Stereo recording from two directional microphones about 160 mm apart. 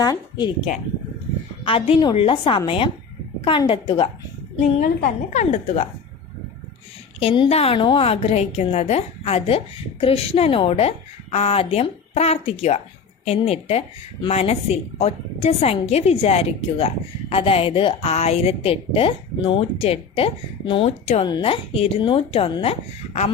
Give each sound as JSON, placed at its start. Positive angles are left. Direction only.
{"t": 0.0, "sound": "a woman's voice", "side_deg": 25}
{"t": 1.6, "sound": "a woman's voice", "side_deg": 35}
{"t": 4.8, "sound": "a woman's voice", "side_deg": 50}
{"t": 7.2, "sound": "a woman's voice", "side_deg": 35}